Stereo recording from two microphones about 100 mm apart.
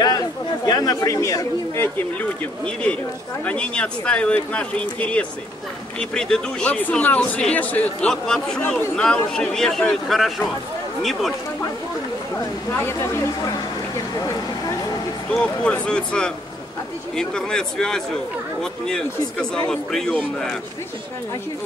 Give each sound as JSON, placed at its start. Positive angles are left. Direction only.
{"t": 0.7, "sound": "speech", "side_deg": 40}
{"t": 1.8, "sound": "a man's voice", "side_deg": 15}
{"t": 12.7, "sound": "speech", "side_deg": 25}
{"t": 14.1, "sound": "speech", "side_deg": 40}
{"t": 15.3, "sound": "a man's voice", "side_deg": 10}